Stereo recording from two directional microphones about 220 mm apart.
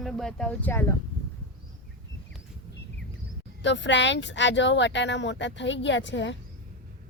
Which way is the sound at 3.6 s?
55° left (ahead or behind).